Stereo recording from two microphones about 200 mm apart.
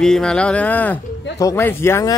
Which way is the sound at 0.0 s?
5° left (ahead or behind).